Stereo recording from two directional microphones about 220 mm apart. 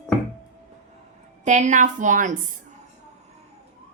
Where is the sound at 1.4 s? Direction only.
35° right (ahead or behind).